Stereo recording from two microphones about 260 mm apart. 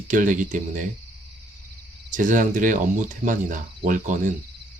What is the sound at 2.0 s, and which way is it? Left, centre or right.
Speech, right.